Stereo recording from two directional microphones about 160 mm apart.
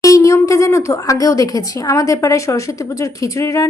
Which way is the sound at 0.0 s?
20° left (ahead or behind).